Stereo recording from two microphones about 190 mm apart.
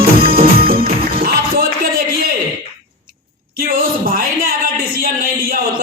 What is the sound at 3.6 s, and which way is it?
Music, 50° right (ahead or behind).